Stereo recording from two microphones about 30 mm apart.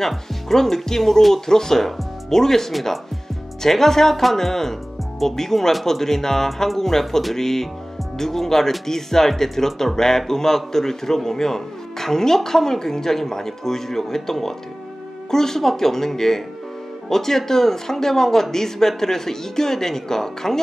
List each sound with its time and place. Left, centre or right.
0.6 s a man's voice: centre